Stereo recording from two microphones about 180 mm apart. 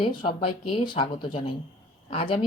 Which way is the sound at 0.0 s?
30° left (ahead or behind).